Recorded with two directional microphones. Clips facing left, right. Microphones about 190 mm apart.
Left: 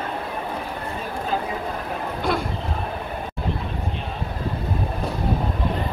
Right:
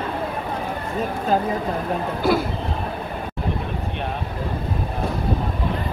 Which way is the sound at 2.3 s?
5° right (ahead or behind).